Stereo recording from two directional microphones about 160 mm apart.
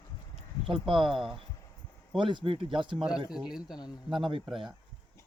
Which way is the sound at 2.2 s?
30° right (ahead or behind).